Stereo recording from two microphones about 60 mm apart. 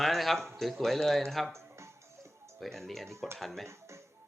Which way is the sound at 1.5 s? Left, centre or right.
Right.